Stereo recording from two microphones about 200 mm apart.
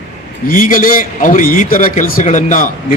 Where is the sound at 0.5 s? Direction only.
45° left (ahead or behind).